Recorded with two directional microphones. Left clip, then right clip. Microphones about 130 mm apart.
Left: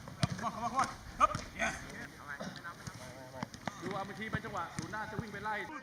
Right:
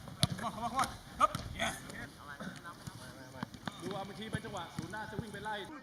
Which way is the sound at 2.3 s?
35° left (ahead or behind).